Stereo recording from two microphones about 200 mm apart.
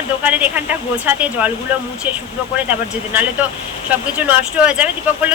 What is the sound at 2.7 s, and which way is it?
Speech, 10° right (ahead or behind).